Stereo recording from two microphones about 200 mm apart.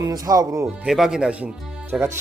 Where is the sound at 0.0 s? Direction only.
15° right (ahead or behind).